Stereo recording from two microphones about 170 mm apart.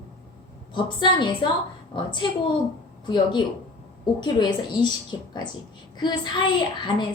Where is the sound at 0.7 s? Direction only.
30° left (ahead or behind).